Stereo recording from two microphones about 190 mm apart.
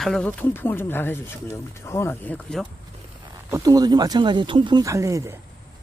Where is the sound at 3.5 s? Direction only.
20° right (ahead or behind).